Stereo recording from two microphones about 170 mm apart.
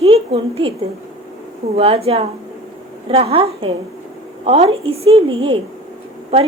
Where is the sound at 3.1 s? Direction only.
35° right (ahead or behind).